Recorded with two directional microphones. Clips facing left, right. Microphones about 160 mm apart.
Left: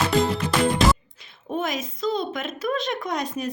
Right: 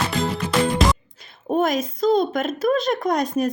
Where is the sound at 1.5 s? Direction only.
45° right (ahead or behind).